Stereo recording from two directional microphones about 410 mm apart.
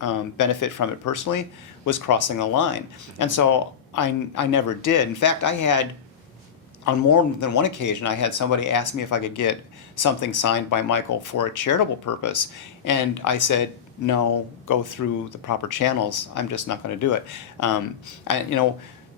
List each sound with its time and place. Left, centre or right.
0.0 s speech: left
6.8 s speech: left